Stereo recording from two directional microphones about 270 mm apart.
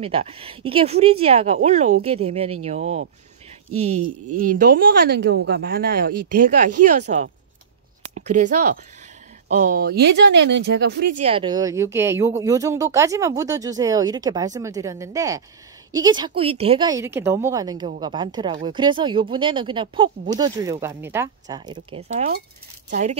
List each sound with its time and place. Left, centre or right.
0.0 s a woman's voice: right
3.7 s speech: right
4.4 s speech: right
11.2 s a woman's voice: centre
22.8 s a woman's voice: right